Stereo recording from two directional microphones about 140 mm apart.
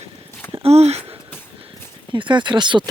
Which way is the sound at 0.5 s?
45° right (ahead or behind).